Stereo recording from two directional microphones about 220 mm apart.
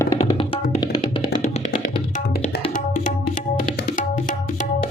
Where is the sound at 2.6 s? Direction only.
35° left (ahead or behind).